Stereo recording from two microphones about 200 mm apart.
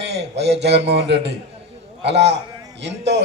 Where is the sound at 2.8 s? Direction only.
60° right (ahead or behind).